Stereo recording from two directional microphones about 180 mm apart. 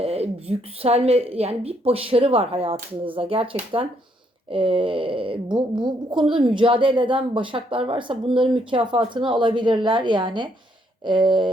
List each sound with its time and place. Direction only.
0.0 s a woman's voice: 35° right (ahead or behind)